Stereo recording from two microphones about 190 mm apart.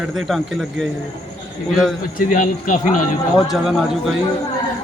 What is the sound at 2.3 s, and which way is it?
Speech, 45° left (ahead or behind).